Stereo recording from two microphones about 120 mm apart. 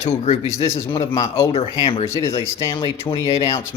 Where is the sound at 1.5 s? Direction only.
55° left (ahead or behind).